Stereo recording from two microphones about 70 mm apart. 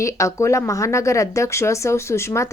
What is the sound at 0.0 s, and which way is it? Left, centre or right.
A woman's voice, left.